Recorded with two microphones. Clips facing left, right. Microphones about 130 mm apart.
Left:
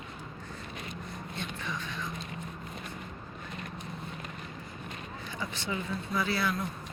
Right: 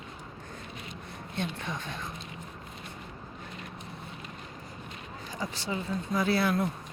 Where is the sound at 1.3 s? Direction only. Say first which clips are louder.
Right 5 dB; 55° right (ahead or behind).